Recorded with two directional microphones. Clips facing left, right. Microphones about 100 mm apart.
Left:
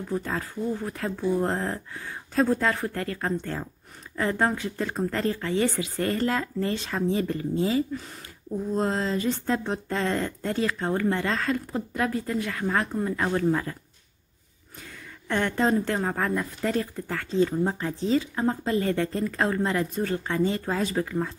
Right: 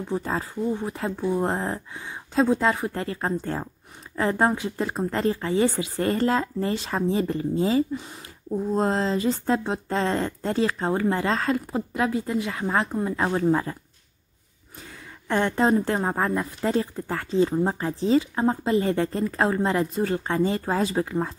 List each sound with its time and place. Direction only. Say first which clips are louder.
0.1 s speech: right 2 dB; 25° right (ahead or behind)
15.2 s speech: right 3 dB; 30° right (ahead or behind)